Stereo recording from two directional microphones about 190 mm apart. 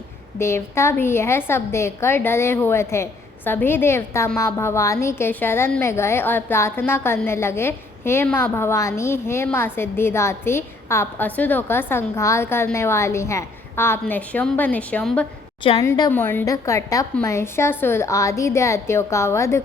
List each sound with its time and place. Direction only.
0.3 s a woman's voice: 15° left (ahead or behind)
15.8 s a woman's voice: 15° left (ahead or behind)